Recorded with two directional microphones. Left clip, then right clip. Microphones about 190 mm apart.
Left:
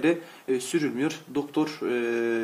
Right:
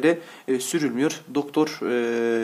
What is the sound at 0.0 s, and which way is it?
Speech, 25° right (ahead or behind).